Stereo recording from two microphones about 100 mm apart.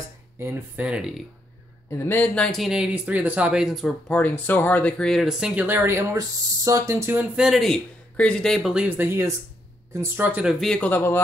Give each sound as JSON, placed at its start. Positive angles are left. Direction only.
{"t": 0.4, "sound": "speech", "side_deg": -25}
{"t": 0.8, "sound": "speech", "side_deg": -10}
{"t": 1.9, "sound": "speech", "side_deg": 25}
{"t": 4.1, "sound": "speech", "side_deg": 15}
{"t": 5.4, "sound": "speech", "side_deg": -15}
{"t": 7.3, "sound": "speech", "side_deg": -5}
{"t": 8.8, "sound": "speech", "side_deg": -20}
{"t": 10.8, "sound": "speech", "side_deg": 20}